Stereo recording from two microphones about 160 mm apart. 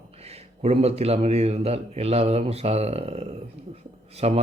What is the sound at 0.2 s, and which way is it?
A man's voice, 40° right (ahead or behind).